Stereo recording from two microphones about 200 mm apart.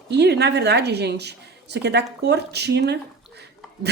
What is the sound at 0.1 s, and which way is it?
A woman's voice, 55° right (ahead or behind).